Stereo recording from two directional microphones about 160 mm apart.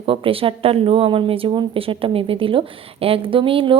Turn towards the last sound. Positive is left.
turn(degrees=-35)  # may be behind; listen again after turning